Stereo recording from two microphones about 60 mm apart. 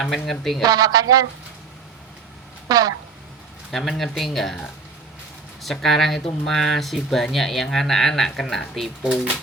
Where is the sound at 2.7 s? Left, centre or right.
Right.